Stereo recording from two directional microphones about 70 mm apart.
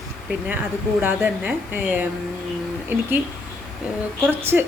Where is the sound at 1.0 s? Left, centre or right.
Right.